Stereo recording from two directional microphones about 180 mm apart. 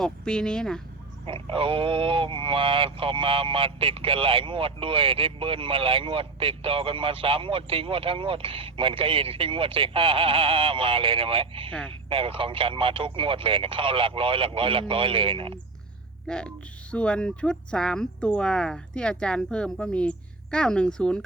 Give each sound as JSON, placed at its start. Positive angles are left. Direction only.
{"t": 0.0, "sound": "speech", "side_deg": 5}
{"t": 1.2, "sound": "speech", "side_deg": -30}
{"t": 16.2, "sound": "speech", "side_deg": 5}